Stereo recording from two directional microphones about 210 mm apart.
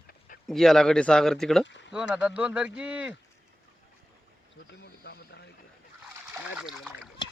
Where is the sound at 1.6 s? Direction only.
60° left (ahead or behind).